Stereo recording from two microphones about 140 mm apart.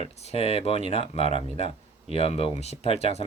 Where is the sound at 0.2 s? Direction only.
50° left (ahead or behind).